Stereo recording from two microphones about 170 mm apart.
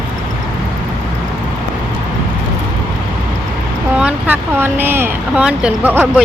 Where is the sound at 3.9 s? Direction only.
10° right (ahead or behind).